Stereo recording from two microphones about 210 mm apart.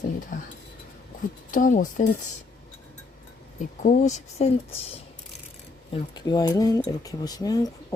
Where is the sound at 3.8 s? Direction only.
35° left (ahead or behind).